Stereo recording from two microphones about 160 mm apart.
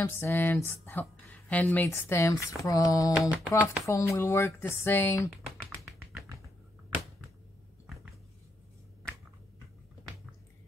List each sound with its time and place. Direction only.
0.0 s speech: 10° left (ahead or behind)
3.2 s speech: 10° right (ahead or behind)
3.8 s speech: 20° left (ahead or behind)
5.3 s a sound: centre (ahead or behind)